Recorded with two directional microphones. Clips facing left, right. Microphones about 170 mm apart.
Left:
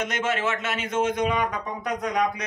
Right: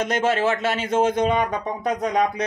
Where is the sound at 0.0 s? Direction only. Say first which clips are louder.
Right 5 dB; 35° right (ahead or behind).